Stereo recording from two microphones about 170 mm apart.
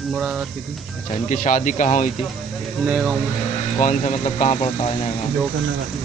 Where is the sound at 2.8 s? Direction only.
5° right (ahead or behind).